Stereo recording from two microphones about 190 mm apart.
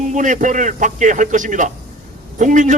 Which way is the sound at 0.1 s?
40° right (ahead or behind).